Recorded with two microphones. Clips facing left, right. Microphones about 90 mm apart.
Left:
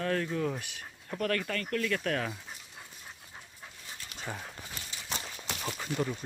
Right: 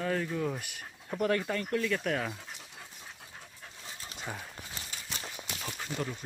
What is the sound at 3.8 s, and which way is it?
Dog, 35° right (ahead or behind).